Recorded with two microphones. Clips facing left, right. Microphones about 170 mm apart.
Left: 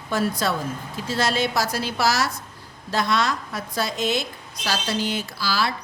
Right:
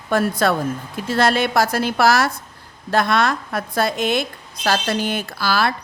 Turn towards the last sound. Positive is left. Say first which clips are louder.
# right 5 dB
turn(degrees=-55)  # may be behind; listen again after turning